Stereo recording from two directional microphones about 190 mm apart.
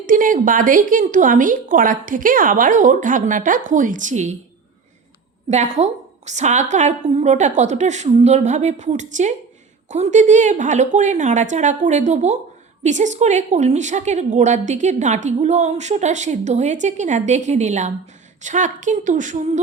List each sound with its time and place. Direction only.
0.0 s a woman's voice: 45° right (ahead or behind)
5.5 s a woman's voice: 35° right (ahead or behind)